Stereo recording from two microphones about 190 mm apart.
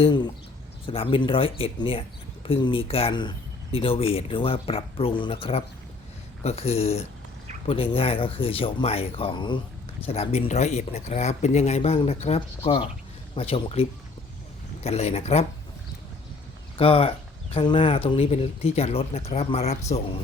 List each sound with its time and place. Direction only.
0.0 s speech: 25° left (ahead or behind)
14.8 s speech: 35° left (ahead or behind)
16.7 s speech: 30° left (ahead or behind)